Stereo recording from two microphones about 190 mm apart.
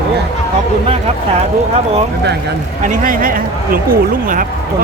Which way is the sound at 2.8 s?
45° right (ahead or behind).